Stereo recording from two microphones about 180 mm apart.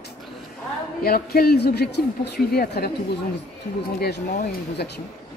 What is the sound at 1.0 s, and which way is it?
Speech, 55° left (ahead or behind).